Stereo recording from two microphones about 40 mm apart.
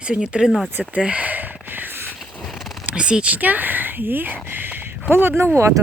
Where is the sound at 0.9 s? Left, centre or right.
Right.